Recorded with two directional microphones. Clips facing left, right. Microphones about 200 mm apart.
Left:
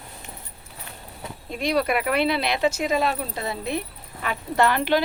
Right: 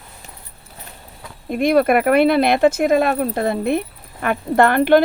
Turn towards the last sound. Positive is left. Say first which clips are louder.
# right 8 dB
turn(degrees=-55)  # may be behind; listen again after turning